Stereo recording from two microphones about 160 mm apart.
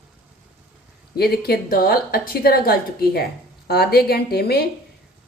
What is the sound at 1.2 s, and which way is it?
A woman's voice, 75° left (ahead or behind).